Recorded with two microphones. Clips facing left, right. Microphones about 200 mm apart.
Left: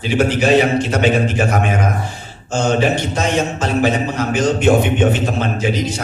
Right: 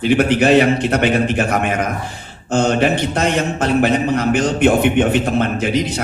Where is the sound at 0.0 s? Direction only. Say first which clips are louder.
Right 2 dB; 60° right (ahead or behind).